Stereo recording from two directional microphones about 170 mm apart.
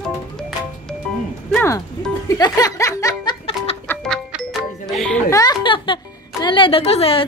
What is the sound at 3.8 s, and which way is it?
Music, 5° left (ahead or behind).